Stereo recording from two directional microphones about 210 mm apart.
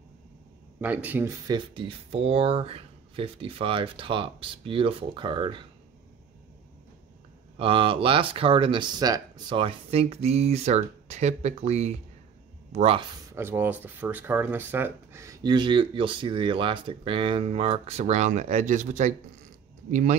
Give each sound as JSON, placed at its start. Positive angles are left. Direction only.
{"t": 0.7, "sound": "a man's voice", "side_deg": -10}
{"t": 1.5, "sound": "speech", "side_deg": -25}
{"t": 7.5, "sound": "speech", "side_deg": -25}
{"t": 13.3, "sound": "speech", "side_deg": -10}